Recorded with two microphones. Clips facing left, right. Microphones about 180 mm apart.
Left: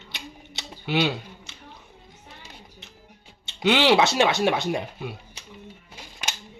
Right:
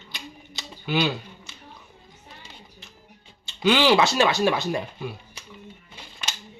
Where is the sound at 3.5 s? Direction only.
25° left (ahead or behind).